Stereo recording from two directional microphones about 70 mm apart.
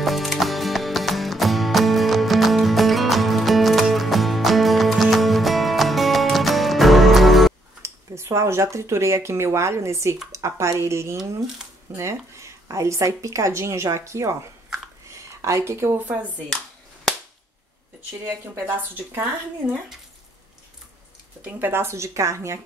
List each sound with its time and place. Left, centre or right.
0.0 s music: centre
7.8 s a woman's voice: right
15.0 s a sound: right
16.1 s speech: right
18.7 s speech: right
19.6 s speech: centre
21.5 s a woman's voice: right